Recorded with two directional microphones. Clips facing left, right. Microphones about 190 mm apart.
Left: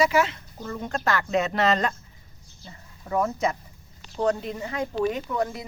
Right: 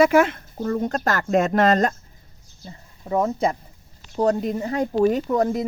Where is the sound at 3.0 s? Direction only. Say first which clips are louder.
Right 4 dB; 25° right (ahead or behind); by 5.7 s 45° right (ahead or behind).